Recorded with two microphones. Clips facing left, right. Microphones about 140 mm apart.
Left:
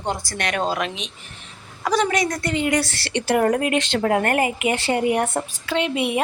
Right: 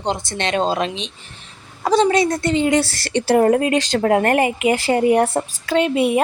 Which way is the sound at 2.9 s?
40° right (ahead or behind).